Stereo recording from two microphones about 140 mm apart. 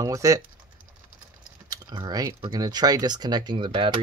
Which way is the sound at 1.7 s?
30° right (ahead or behind).